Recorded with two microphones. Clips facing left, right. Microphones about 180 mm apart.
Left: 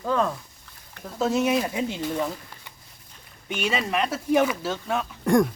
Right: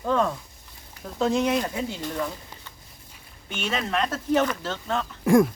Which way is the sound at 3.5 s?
10° left (ahead or behind).